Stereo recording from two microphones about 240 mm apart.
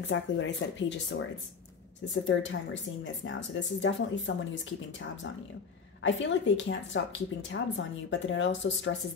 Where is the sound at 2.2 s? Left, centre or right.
Left.